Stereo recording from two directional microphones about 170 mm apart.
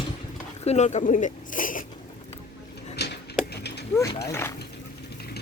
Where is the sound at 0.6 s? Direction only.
40° left (ahead or behind).